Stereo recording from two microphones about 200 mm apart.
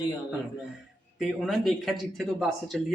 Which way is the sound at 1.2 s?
Centre (ahead or behind).